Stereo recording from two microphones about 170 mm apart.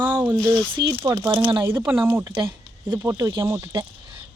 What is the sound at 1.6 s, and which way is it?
Speech, 10° right (ahead or behind).